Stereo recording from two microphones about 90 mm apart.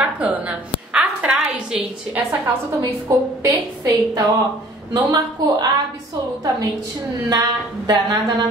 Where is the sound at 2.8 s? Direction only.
40° right (ahead or behind).